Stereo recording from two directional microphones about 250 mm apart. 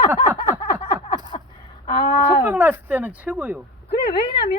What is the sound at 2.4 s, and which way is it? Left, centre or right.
Speech, centre.